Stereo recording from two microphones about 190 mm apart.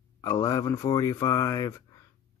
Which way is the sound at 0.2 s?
15° left (ahead or behind).